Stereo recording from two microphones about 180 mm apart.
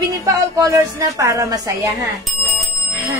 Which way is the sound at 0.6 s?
15° right (ahead or behind).